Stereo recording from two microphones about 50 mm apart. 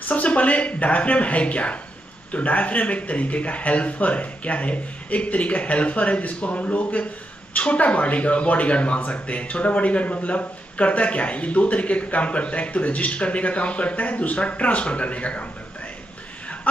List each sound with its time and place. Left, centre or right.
0.1 s speech: left